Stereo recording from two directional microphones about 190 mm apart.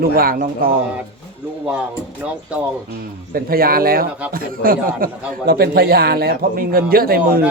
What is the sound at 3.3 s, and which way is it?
Speech, 50° right (ahead or behind).